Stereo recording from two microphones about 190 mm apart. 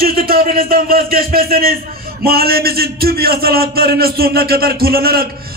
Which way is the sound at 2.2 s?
55° right (ahead or behind).